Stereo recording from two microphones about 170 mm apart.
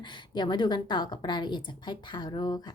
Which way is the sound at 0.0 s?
25° left (ahead or behind).